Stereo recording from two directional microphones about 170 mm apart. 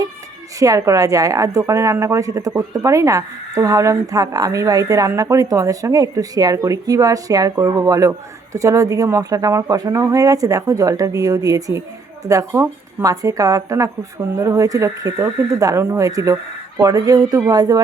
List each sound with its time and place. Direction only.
0.6 s speech: 20° right (ahead or behind)